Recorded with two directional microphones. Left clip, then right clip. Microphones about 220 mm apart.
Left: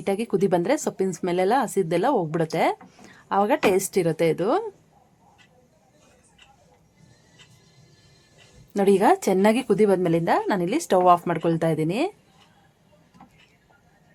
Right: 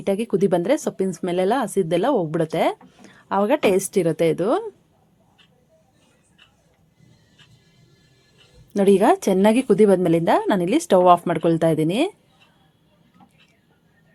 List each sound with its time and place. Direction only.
0.0 s speech: 5° right (ahead or behind)
8.7 s speech: 10° right (ahead or behind)